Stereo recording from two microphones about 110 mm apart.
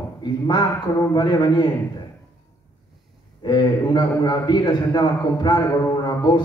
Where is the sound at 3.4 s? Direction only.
40° left (ahead or behind).